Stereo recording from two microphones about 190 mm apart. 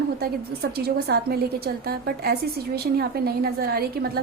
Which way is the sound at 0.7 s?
55° right (ahead or behind).